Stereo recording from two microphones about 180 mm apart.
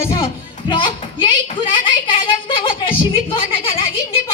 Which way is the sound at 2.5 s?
30° left (ahead or behind).